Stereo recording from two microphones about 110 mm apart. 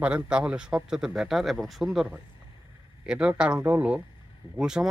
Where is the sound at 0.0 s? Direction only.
10° right (ahead or behind).